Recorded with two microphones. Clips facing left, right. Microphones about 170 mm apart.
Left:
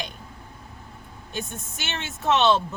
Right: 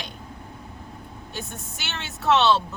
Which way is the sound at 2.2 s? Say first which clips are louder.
Right 1 dB; 20° left (ahead or behind).